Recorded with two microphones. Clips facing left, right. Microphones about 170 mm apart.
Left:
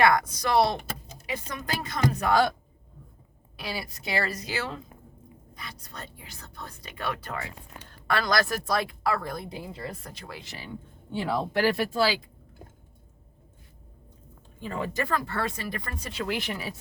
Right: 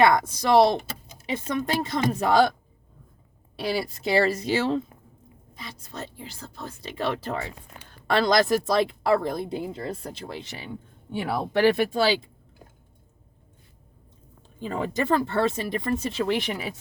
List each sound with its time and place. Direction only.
0.0 s speech: 25° right (ahead or behind)
3.6 s speech: 30° right (ahead or behind)
14.6 s speech: 20° right (ahead or behind)